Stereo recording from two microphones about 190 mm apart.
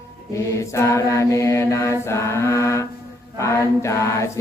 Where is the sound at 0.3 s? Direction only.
15° left (ahead or behind).